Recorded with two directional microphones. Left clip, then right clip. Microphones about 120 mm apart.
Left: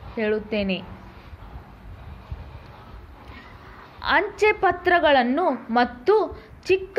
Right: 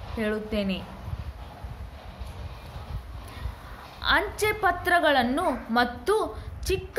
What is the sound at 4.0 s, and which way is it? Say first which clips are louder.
A woman's voice: left 4 dB; 35° left (ahead or behind).